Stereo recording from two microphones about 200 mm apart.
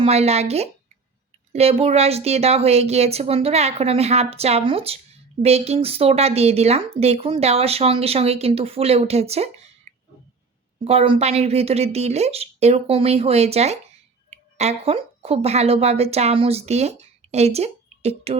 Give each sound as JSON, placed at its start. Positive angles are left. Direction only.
{"t": 0.0, "sound": "speech", "side_deg": -30}
{"t": 10.8, "sound": "a woman's voice", "side_deg": -30}